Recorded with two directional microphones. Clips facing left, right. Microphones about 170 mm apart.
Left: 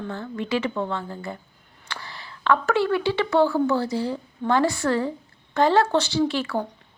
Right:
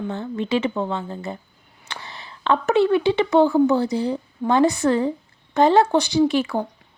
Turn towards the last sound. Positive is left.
turn(degrees=-15)  # may be behind; listen again after turning